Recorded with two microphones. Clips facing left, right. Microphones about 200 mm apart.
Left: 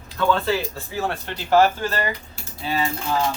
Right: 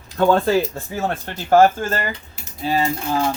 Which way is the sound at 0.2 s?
45° right (ahead or behind).